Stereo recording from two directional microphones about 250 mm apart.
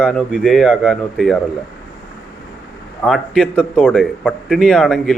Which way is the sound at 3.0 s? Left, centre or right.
Centre.